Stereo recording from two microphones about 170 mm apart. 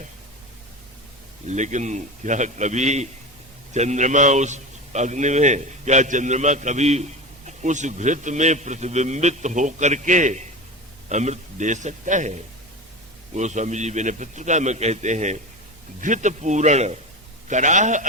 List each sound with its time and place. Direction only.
1.5 s a man's voice: 45° right (ahead or behind)